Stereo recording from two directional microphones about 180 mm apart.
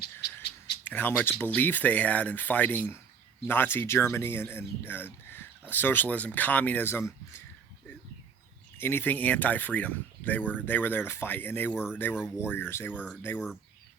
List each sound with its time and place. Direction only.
0.0 s bird: 60° left (ahead or behind)
0.9 s speech: 10° left (ahead or behind)
8.8 s speech: 10° left (ahead or behind)
11.7 s speech: 5° right (ahead or behind)
12.2 s speech: 10° left (ahead or behind)
12.9 s speech: 5° right (ahead or behind)